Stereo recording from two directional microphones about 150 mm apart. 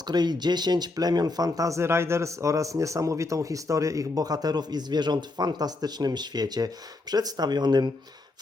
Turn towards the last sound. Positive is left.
turn(degrees=-30)  # may be behind; listen again after turning